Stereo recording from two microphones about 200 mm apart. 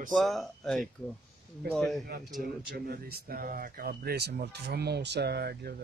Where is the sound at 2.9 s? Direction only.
50° right (ahead or behind).